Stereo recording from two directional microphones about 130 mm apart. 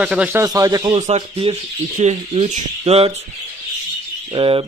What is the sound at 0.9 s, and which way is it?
Speech, 65° right (ahead or behind).